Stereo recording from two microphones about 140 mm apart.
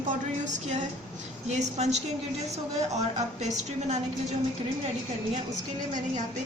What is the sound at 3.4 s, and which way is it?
Speech, 55° right (ahead or behind).